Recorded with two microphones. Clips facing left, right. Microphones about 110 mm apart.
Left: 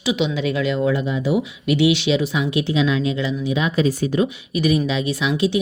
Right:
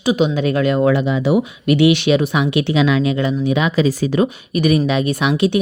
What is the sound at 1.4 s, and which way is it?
Speech, 55° right (ahead or behind).